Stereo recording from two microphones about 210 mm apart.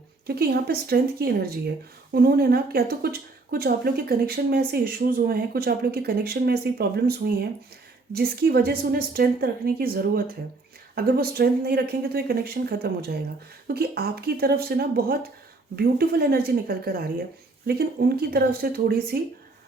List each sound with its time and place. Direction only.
0.3 s speech: 50° right (ahead or behind)